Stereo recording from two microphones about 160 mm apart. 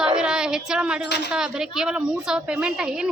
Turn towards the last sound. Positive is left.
turn(degrees=-5)  # may be behind; listen again after turning